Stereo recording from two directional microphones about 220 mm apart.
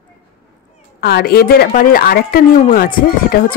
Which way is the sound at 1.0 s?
45° left (ahead or behind).